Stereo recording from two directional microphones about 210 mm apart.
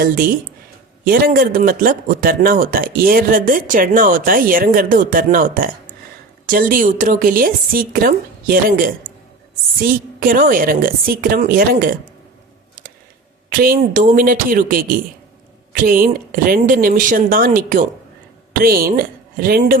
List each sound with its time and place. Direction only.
0.0 s a man's voice: 45° right (ahead or behind)
13.5 s a man's voice: 45° right (ahead or behind)